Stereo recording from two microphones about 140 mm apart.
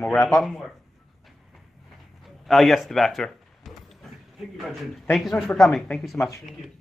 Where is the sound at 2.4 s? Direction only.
Centre (ahead or behind).